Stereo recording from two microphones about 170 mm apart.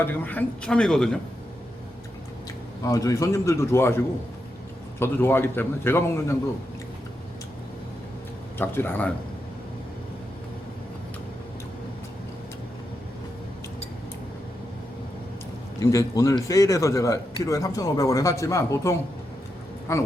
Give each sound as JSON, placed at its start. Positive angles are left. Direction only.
{"t": 0.0, "sound": "speech", "side_deg": 10}
{"t": 2.8, "sound": "a man's voice", "side_deg": 20}
{"t": 8.5, "sound": "a man's voice", "side_deg": 10}
{"t": 15.8, "sound": "a man's voice", "side_deg": 20}